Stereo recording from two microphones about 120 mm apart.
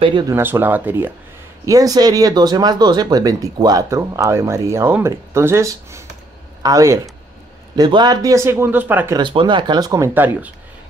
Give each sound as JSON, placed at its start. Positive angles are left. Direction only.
{"t": 0.3, "sound": "speech", "side_deg": -15}
{"t": 1.7, "sound": "speech", "side_deg": -30}
{"t": 9.1, "sound": "speech", "side_deg": -45}
{"t": 10.1, "sound": "speech", "side_deg": -15}